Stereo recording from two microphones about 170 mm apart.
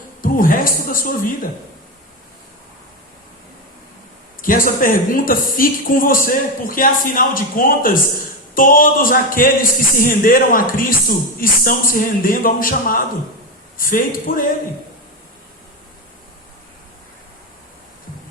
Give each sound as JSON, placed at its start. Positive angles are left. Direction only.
{"t": 0.2, "sound": "a woman's voice", "side_deg": 55}
{"t": 4.4, "sound": "a woman's voice", "side_deg": 55}